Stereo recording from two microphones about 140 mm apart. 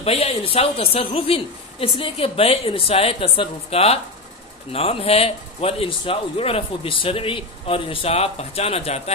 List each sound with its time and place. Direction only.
0.0 s a man's voice: 45° left (ahead or behind)